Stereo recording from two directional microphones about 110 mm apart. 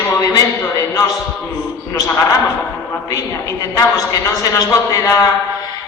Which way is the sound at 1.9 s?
35° left (ahead or behind).